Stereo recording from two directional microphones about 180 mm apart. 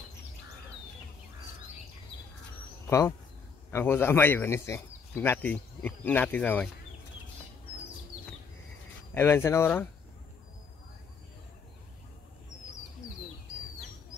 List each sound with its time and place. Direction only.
2.9 s speech: 15° left (ahead or behind)
9.1 s speech: 15° left (ahead or behind)